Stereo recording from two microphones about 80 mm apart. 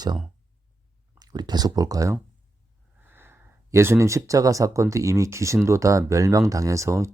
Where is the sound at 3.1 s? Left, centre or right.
Right.